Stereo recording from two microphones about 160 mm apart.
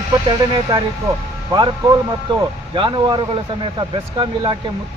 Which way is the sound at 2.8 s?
30° right (ahead or behind).